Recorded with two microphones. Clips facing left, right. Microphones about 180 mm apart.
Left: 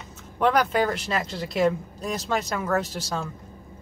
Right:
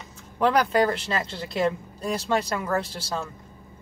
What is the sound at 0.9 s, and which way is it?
Speech, 30° right (ahead or behind).